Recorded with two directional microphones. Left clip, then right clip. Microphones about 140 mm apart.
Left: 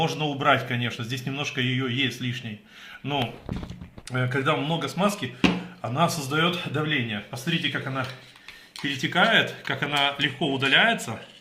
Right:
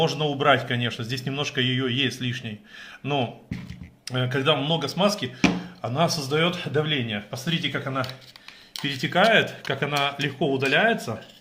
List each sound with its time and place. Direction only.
0.0 s speech: 25° right (ahead or behind)
4.1 s speech: 25° right (ahead or behind); by 8.0 s 50° right (ahead or behind)
8.8 s speech: 65° right (ahead or behind); by 11.1 s 90° right